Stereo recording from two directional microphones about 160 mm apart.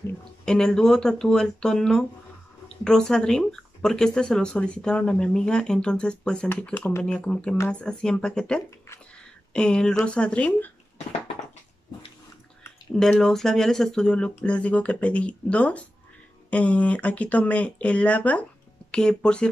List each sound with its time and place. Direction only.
0.2 s speech: 5° left (ahead or behind)
8.6 s speech: 15° left (ahead or behind)
9.5 s speech: 5° left (ahead or behind)
12.9 s speech: 5° left (ahead or behind)